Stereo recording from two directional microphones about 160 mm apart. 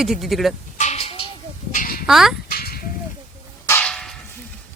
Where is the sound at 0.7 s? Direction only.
45° left (ahead or behind).